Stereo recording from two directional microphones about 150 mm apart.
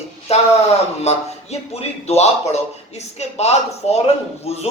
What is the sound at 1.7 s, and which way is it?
Speech, 45° left (ahead or behind).